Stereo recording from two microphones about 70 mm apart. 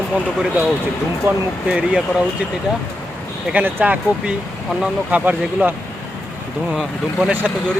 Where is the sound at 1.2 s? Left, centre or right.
Right.